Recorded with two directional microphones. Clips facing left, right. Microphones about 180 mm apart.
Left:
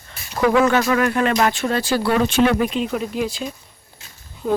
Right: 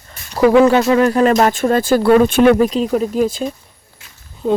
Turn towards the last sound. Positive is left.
turn(degrees=-30)  # may be behind; listen again after turning